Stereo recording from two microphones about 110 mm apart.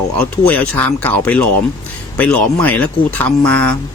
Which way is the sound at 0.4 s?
15° left (ahead or behind).